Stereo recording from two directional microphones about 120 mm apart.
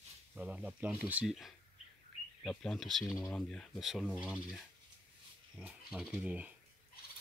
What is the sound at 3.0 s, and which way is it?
Speech, 30° left (ahead or behind).